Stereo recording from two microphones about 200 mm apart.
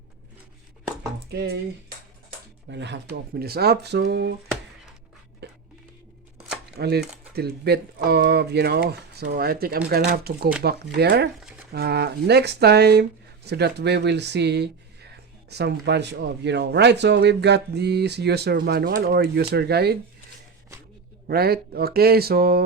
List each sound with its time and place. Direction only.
1.3 s speech: 55° right (ahead or behind)
2.6 s speech: 60° right (ahead or behind)
5.4 s music: 55° right (ahead or behind)
6.7 s speech: 50° right (ahead or behind)
21.2 s speech: 50° right (ahead or behind)